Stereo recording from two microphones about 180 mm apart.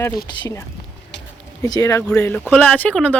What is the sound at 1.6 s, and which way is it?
Speech, 20° left (ahead or behind).